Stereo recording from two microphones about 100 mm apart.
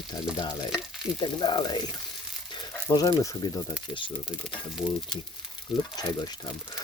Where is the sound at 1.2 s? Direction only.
50° left (ahead or behind).